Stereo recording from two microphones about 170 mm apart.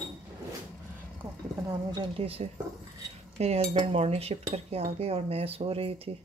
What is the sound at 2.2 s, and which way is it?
Speech, 35° right (ahead or behind).